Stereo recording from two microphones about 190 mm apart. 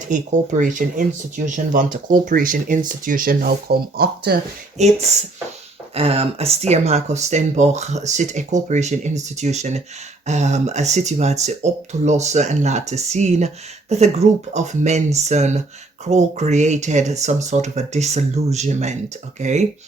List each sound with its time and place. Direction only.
0.1 s speech: 40° right (ahead or behind)
4.8 s speech: 35° right (ahead or behind)